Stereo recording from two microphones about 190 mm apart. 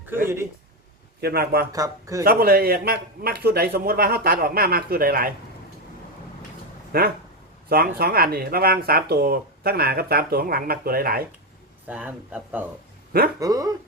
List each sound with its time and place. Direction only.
1.2 s a man's voice: 55° right (ahead or behind)
1.7 s speech: 15° right (ahead or behind)
2.2 s speech: 55° right (ahead or behind)
6.9 s speech: 55° right (ahead or behind)
11.9 s speech: 5° right (ahead or behind)